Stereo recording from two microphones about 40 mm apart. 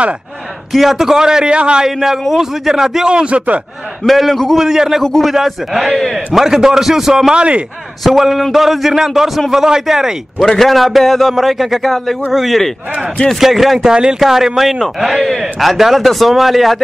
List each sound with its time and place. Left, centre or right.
0.7 s a man's voice: centre; by 1.9 s right
1.9 s a man's voice: centre
3.1 s speech: right
4.0 s a man's voice: centre
4.6 s a man's voice: centre
7.3 s speech: right
8.0 s a man's voice: centre
10.6 s a man's voice: centre
13.8 s speech: centre
14.2 s a man's voice: centre